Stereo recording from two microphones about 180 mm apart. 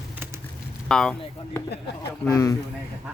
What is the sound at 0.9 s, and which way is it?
Speech, 5° left (ahead or behind).